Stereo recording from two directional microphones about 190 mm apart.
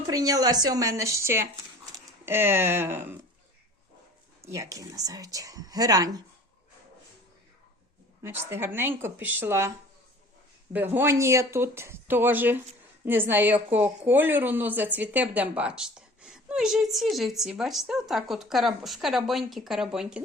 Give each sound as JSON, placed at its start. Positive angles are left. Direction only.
{"t": 0.1, "sound": "speech", "side_deg": -20}
{"t": 4.4, "sound": "speech", "side_deg": -15}
{"t": 8.2, "sound": "a woman's voice", "side_deg": -15}